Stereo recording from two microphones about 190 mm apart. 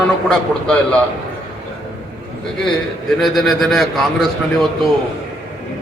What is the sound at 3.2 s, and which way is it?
A man's voice, centre (ahead or behind).